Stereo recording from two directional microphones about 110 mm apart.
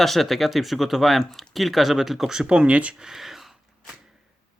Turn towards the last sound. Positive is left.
turn(degrees=0)  # may be behind; listen again after turning